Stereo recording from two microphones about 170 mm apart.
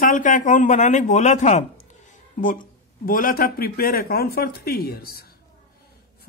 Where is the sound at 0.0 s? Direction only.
50° left (ahead or behind).